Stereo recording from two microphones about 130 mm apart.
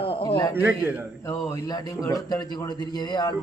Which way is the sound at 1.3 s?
25° left (ahead or behind).